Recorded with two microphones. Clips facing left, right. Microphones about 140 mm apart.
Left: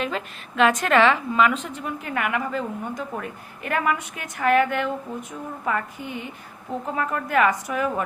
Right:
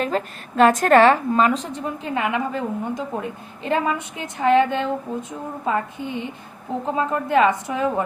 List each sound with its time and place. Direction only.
0.0 s a woman's voice: 40° right (ahead or behind); by 8.0 s 25° right (ahead or behind)